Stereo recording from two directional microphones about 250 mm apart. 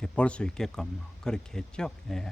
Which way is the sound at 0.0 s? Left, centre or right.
Centre.